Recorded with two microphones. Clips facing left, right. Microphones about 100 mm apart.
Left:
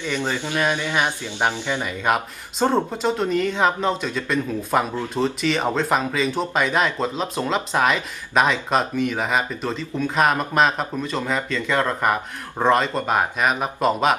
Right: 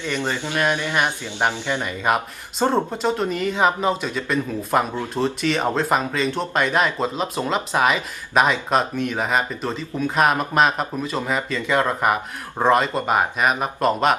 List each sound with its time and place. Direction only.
0.0 s speech: 10° left (ahead or behind)
1.0 s speech: 15° right (ahead or behind)
1.5 s speech: 15° left (ahead or behind)
1.8 s speech: centre (ahead or behind)